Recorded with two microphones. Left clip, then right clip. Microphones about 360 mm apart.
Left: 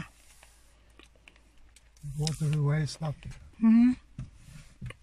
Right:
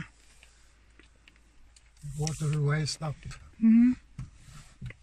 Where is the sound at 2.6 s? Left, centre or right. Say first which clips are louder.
Right 3 dB; right.